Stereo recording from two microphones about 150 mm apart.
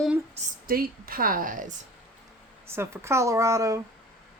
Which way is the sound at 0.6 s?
75° right (ahead or behind).